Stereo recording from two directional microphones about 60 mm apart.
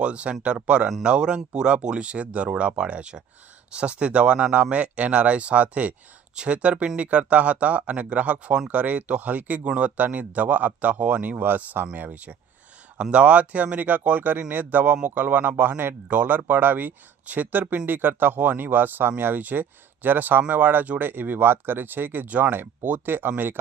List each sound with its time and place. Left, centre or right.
0.0 s speech: centre; by 23.3 s right